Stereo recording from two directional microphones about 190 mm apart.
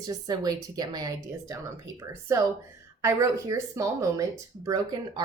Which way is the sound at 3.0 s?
15° right (ahead or behind).